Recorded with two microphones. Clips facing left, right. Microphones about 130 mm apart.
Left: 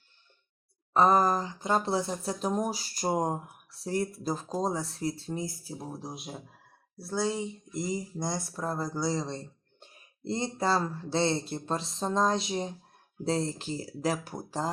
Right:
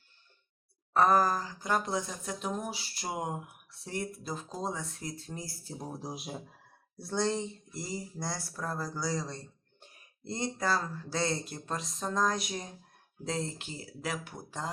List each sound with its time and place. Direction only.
0.9 s speech: 20° left (ahead or behind)
5.6 s speech: centre (ahead or behind)
7.7 s speech: 20° left (ahead or behind); by 14.7 s 35° left (ahead or behind)